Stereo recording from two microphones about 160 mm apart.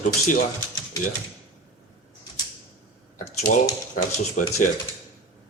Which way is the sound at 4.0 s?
50° left (ahead or behind).